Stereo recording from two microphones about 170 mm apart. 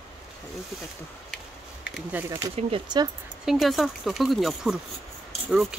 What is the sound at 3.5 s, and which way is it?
Speech, centre (ahead or behind).